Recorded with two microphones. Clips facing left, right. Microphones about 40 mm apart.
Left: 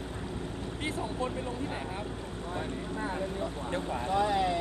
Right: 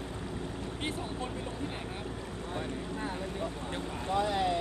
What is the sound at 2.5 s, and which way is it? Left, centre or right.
Vehicle, centre.